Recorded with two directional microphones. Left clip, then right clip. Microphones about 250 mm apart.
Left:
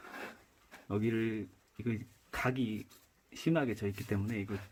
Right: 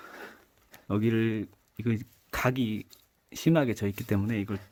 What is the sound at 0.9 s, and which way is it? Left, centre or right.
Speech, right.